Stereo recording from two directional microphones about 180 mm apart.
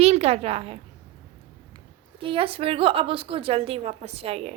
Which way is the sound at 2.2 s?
30° right (ahead or behind).